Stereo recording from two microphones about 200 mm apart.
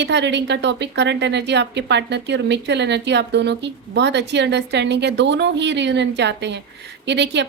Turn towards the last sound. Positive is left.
turn(degrees=-60)  # may be behind; listen again after turning